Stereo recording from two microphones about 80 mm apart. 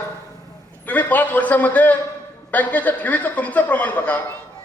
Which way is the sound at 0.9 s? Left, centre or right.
Left.